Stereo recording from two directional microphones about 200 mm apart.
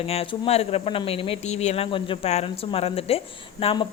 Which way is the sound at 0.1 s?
30° left (ahead or behind).